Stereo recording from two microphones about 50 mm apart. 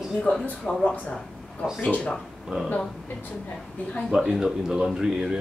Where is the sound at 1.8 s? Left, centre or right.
Left.